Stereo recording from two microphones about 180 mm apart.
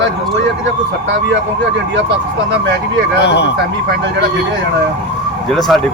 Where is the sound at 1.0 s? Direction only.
80° right.